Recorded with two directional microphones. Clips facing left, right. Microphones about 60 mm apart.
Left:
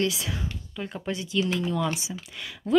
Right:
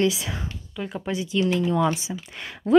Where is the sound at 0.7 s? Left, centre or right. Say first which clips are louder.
Right 3 dB; centre.